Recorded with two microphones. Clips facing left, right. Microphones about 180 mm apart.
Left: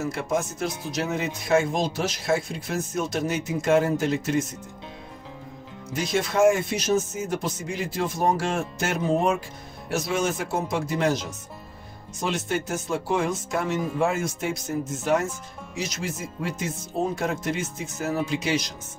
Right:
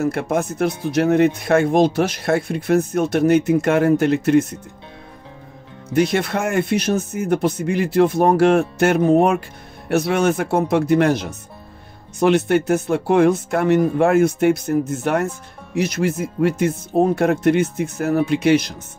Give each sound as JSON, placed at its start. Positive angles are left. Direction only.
{"t": 0.0, "sound": "speech", "side_deg": -60}
{"t": 5.9, "sound": "speech", "side_deg": -60}